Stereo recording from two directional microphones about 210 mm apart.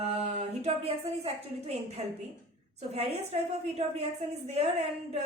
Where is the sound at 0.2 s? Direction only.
30° right (ahead or behind).